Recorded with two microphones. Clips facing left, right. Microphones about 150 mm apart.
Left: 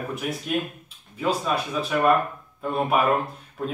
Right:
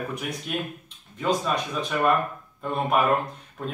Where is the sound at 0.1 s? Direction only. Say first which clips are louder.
Left 4 dB; centre (ahead or behind).